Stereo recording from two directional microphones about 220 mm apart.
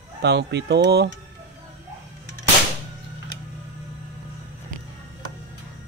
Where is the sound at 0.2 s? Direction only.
50° right (ahead or behind).